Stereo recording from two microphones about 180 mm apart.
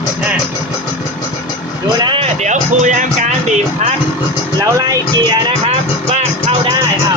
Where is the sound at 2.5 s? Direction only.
40° right (ahead or behind).